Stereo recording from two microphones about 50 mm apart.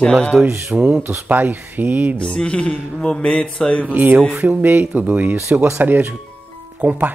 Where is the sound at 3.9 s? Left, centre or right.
Right.